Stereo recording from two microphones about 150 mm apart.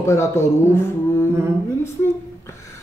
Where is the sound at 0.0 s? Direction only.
20° left (ahead or behind).